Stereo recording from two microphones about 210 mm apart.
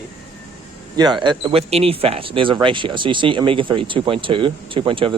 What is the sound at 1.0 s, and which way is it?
Speech, 20° right (ahead or behind).